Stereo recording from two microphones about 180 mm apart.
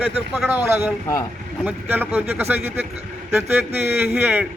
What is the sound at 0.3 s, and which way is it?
A man's voice, 5° right (ahead or behind).